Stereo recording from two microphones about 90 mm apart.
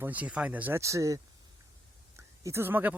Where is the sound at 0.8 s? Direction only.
35° right (ahead or behind).